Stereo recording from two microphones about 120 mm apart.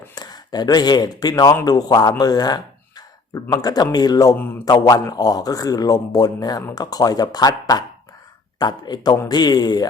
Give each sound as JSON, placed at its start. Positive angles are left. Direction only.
{"t": 0.1, "sound": "speech", "side_deg": 35}
{"t": 4.4, "sound": "speech", "side_deg": 15}
{"t": 4.6, "sound": "speech", "side_deg": 30}